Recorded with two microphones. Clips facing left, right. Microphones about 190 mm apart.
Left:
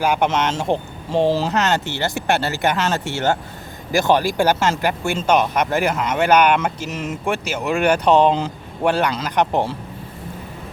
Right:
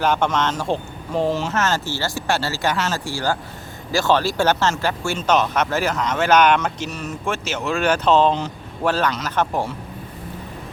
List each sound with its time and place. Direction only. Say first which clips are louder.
0.0 s speech: left 1 dB; 10° left (ahead or behind)
0.5 s speech: left 2 dB; 20° left (ahead or behind)
1.5 s speech: left 2 dB; 20° left (ahead or behind)
6.9 s speech: left 3 dB; 90° left
7.3 s speech: left 2 dB; 15° left (ahead or behind)